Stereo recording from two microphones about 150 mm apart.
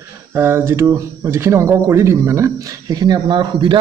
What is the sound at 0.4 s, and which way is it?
Speech, 15° right (ahead or behind).